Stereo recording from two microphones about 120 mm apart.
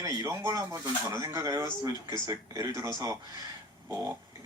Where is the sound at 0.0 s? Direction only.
30° right (ahead or behind).